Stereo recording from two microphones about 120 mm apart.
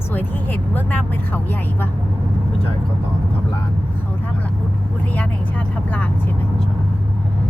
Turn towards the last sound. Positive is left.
turn(degrees=15)  # may be behind; listen again after turning